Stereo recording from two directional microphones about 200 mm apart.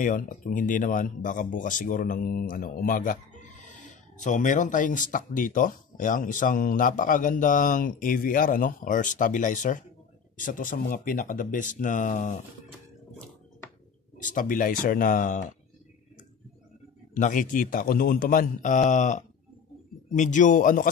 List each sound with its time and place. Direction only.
0.0 s speech: 40° left (ahead or behind)
14.2 s speech: 40° left (ahead or behind)
17.1 s speech: 40° left (ahead or behind)